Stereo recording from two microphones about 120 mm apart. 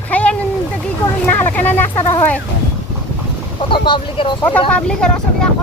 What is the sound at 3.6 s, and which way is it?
Speech, 45° left (ahead or behind).